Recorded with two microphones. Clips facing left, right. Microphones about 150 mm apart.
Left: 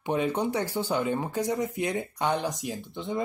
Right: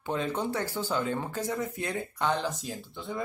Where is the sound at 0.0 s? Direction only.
15° left (ahead or behind).